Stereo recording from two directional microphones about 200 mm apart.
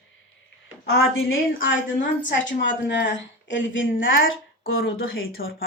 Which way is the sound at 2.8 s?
60° left (ahead or behind).